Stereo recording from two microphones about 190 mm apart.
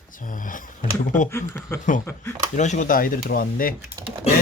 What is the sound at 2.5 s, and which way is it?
Speech, 40° left (ahead or behind).